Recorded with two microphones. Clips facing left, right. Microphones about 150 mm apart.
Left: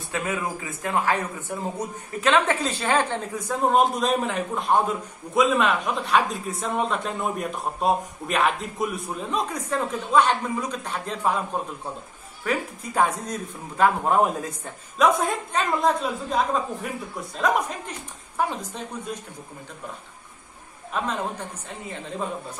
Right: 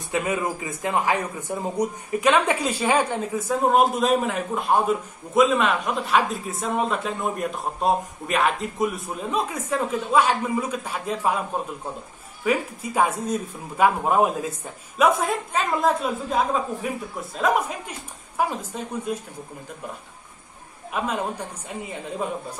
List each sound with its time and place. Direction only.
0.1 s a woman's voice: 15° right (ahead or behind)
12.4 s a woman's voice: 10° right (ahead or behind)
20.9 s a woman's voice: 10° right (ahead or behind)